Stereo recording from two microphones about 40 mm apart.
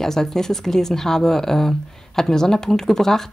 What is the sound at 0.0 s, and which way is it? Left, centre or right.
A woman's voice, centre.